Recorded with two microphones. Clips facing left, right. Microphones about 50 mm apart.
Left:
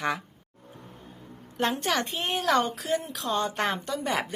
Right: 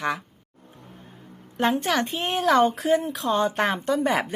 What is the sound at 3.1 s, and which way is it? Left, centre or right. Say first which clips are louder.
Speech: right 5 dB; centre.